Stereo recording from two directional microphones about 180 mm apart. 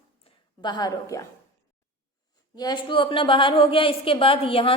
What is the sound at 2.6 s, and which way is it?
A woman's voice, 25° left (ahead or behind).